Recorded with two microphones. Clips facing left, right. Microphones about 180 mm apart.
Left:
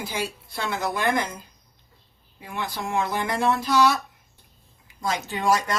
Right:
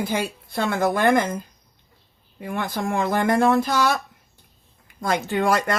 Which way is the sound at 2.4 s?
50° right (ahead or behind).